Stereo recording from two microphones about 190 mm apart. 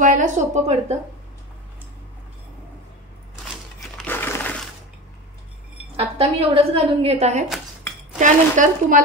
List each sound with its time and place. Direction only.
0.0 s speech: 40° right (ahead or behind)
4.0 s a sound: 10° left (ahead or behind)
5.9 s a woman's voice: 30° right (ahead or behind)